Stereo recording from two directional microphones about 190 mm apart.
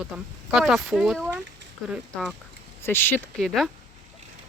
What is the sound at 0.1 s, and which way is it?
Speech, 5° right (ahead or behind).